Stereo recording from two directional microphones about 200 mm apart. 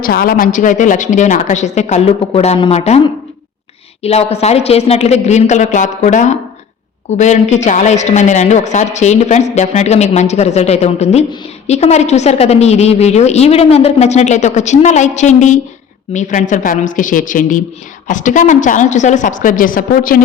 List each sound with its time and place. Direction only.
0.0 s a woman's voice: 50° left (ahead or behind); by 3.0 s 30° left (ahead or behind)
4.0 s a woman's voice: 30° left (ahead or behind)